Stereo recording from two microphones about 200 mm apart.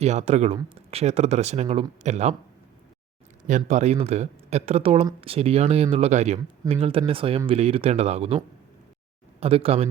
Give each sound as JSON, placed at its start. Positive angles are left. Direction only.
{"t": 0.0, "sound": "speech", "side_deg": -35}
{"t": 3.7, "sound": "speech", "side_deg": -35}
{"t": 9.4, "sound": "speech", "side_deg": -30}